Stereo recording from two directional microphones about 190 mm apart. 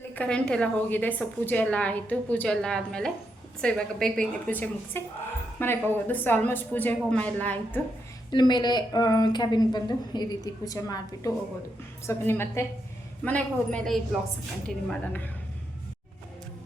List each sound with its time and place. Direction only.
0.1 s a woman's voice: 5° left (ahead or behind)
8.3 s a woman's voice: 25° left (ahead or behind)